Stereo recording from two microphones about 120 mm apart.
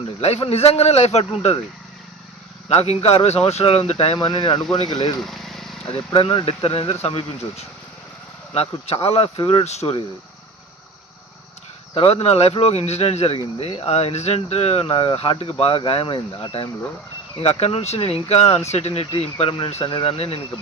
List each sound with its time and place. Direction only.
0.2 s speech: 60° left (ahead or behind)
2.6 s speech: 60° left (ahead or behind)
5.2 s vehicle: centre (ahead or behind)
6.1 s speech: 45° left (ahead or behind); by 10.0 s 60° left (ahead or behind)
11.9 s speech: 55° left (ahead or behind)